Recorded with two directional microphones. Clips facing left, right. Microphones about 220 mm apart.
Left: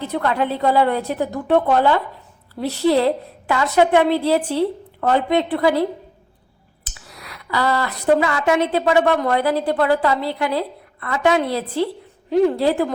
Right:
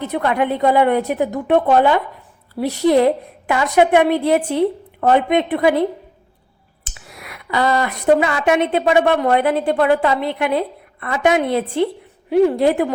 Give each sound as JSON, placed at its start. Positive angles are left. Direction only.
{"t": 0.0, "sound": "a woman's voice", "side_deg": -15}
{"t": 6.9, "sound": "a woman's voice", "side_deg": -20}